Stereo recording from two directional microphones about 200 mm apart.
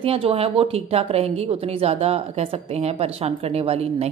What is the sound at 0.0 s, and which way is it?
Speech, 30° right (ahead or behind).